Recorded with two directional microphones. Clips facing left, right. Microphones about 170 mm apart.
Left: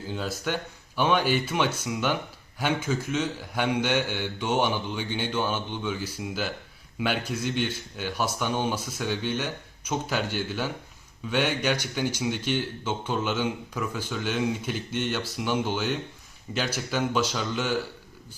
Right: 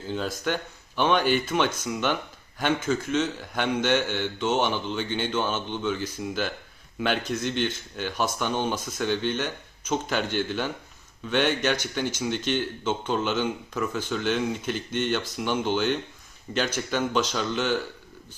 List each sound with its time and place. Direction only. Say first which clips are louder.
0.1 s speech: right 2 dB; 10° left (ahead or behind)